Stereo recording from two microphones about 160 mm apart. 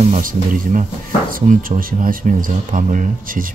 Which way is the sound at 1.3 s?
65° right (ahead or behind).